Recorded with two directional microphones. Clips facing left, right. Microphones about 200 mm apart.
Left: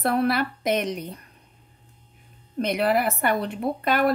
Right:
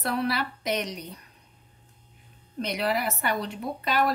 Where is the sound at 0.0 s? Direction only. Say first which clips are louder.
Left 5 dB; 50° left (ahead or behind).